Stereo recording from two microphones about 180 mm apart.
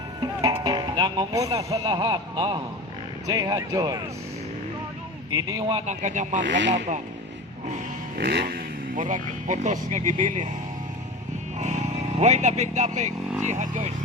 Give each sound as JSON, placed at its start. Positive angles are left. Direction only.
{"t": 0.2, "sound": "speech", "side_deg": -20}
{"t": 5.3, "sound": "speech", "side_deg": -20}
{"t": 5.8, "sound": "speech", "side_deg": -40}
{"t": 6.5, "sound": "rub", "side_deg": -80}
{"t": 8.2, "sound": "speech", "side_deg": -65}
{"t": 11.6, "sound": "speech", "side_deg": -40}